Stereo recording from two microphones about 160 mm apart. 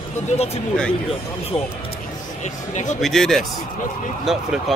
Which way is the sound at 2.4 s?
50° left (ahead or behind).